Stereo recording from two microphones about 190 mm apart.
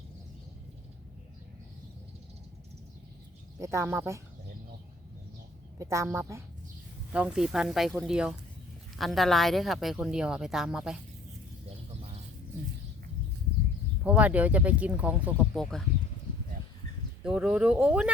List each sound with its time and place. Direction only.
3.6 s speech: 15° right (ahead or behind)
5.8 s speech: 15° right (ahead or behind)
14.0 s speech: 5° right (ahead or behind)
15.5 s speech: centre (ahead or behind)
17.2 s speech: 5° right (ahead or behind)